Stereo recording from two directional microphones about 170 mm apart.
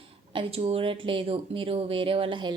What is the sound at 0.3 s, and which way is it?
Speech, 35° right (ahead or behind).